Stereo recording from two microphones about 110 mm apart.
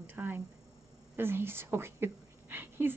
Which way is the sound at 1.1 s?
20° right (ahead or behind).